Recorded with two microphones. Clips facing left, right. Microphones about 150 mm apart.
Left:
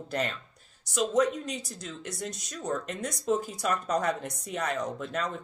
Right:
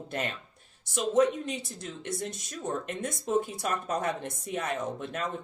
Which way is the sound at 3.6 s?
45° right (ahead or behind).